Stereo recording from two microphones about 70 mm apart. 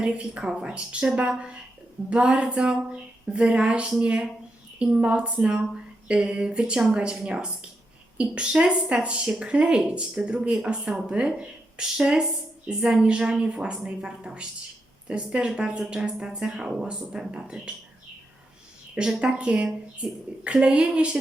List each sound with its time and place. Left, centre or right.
0.0 s a woman's voice: centre
18.9 s a woman's voice: centre